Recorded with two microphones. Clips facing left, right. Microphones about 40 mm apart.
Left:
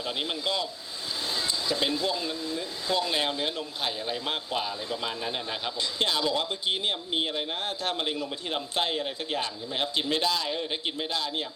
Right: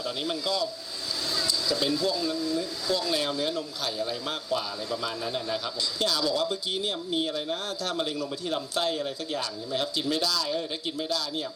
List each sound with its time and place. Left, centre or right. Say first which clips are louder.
0.0 s speech: even; left